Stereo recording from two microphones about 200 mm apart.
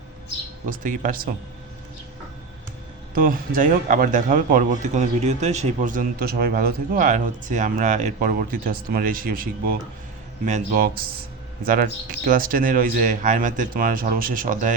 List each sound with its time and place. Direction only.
0.6 s a man's voice: 40° right (ahead or behind)
3.2 s a man's voice: 45° right (ahead or behind)